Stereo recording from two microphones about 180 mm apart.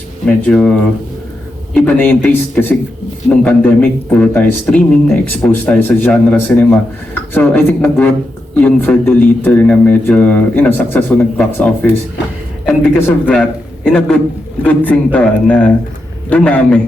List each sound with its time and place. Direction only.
0.3 s a man's voice: 5° left (ahead or behind)
1.7 s a man's voice: 10° left (ahead or behind)